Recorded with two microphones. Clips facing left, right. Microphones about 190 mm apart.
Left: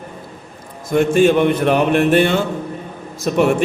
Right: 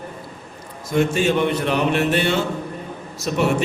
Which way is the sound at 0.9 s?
55° left (ahead or behind).